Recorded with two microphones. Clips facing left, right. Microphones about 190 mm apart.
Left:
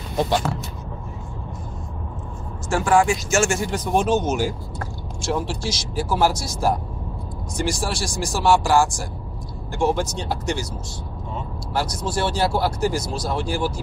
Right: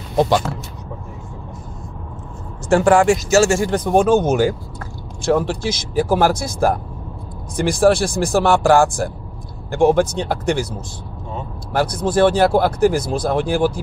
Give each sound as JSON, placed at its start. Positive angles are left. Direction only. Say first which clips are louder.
{"t": 2.7, "sound": "speech", "louder": "right 5 dB", "side_deg": -65}
{"t": 11.7, "sound": "speech", "louder": "right 7 dB", "side_deg": -55}